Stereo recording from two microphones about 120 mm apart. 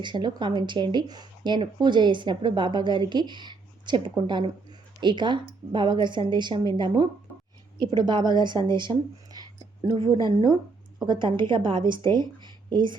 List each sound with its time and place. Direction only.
0.0 s speech: 40° right (ahead or behind)